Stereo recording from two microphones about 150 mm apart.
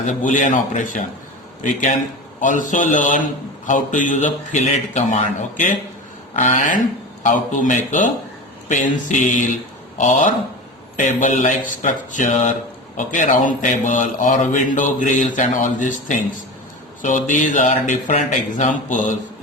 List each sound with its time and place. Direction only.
0.0 s speech: 55° left (ahead or behind)